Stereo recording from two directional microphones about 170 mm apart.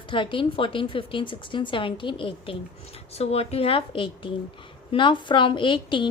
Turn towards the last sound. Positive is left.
turn(degrees=30)  # may be behind; listen again after turning